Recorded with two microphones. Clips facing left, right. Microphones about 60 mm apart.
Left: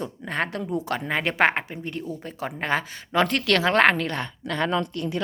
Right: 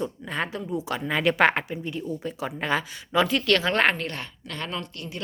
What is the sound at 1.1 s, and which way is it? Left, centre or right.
Speech, left.